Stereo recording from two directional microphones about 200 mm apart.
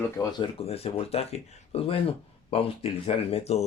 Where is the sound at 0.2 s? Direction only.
20° left (ahead or behind).